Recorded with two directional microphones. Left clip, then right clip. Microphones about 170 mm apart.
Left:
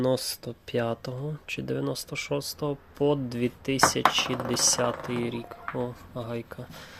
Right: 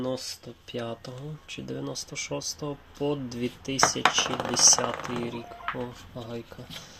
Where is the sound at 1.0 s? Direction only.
25° left (ahead or behind).